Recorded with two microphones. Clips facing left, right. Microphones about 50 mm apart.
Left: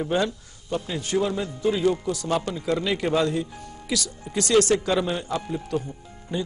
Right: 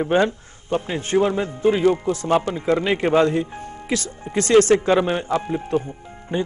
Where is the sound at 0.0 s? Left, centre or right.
Right.